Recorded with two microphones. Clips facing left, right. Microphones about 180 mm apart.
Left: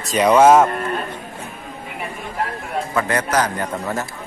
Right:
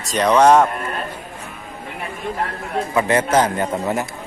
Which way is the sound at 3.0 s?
25° right (ahead or behind).